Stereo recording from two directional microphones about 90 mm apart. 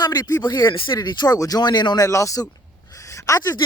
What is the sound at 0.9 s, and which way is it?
Speech, 50° left (ahead or behind).